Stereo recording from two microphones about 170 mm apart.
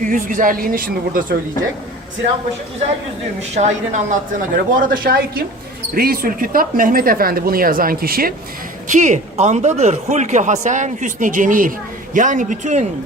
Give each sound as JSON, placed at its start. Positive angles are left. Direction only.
{"t": 0.0, "sound": "speech", "side_deg": -50}
{"t": 3.5, "sound": "speech", "side_deg": -45}
{"t": 8.9, "sound": "speech", "side_deg": -45}